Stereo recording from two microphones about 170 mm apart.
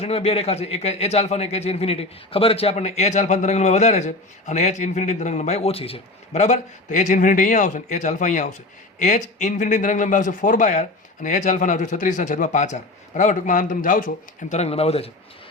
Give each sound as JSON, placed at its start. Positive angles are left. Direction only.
{"t": 0.0, "sound": "a man's voice", "side_deg": 35}
{"t": 14.5, "sound": "a man's voice", "side_deg": 40}